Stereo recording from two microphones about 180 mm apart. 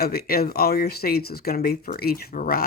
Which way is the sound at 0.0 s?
60° left (ahead or behind).